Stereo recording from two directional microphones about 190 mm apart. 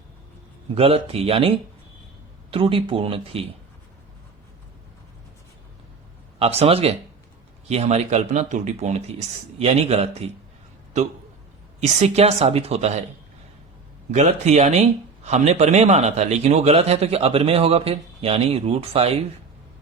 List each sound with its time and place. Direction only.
0.8 s speech: 30° right (ahead or behind)
6.4 s speech: 30° right (ahead or behind)
11.8 s speech: 35° right (ahead or behind)
14.1 s speech: 35° right (ahead or behind)